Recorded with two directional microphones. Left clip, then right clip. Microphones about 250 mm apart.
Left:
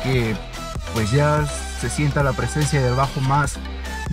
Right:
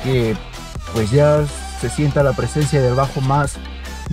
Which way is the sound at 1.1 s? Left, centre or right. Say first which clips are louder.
Right 6 dB; left.